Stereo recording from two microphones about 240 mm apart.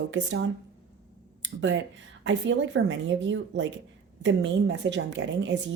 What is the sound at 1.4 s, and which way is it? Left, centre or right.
A woman's voice, right.